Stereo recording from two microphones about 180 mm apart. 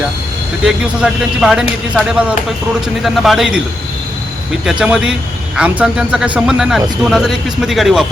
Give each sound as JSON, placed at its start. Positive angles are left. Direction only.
{"t": 0.6, "sound": "speech", "side_deg": 0}
{"t": 4.6, "sound": "speech", "side_deg": -5}